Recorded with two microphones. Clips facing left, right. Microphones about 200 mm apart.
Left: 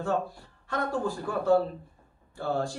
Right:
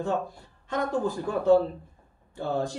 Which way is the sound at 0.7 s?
20° right (ahead or behind).